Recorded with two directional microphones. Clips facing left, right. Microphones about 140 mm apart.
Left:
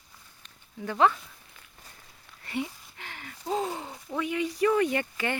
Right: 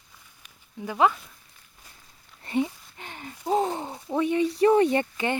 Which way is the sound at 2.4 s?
25° right (ahead or behind).